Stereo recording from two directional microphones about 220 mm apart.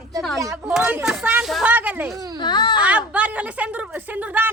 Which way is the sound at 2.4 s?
20° left (ahead or behind).